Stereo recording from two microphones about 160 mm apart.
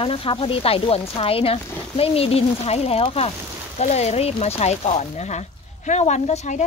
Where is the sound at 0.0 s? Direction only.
35° left (ahead or behind).